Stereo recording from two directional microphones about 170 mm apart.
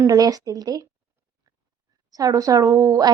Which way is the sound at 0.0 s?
20° right (ahead or behind).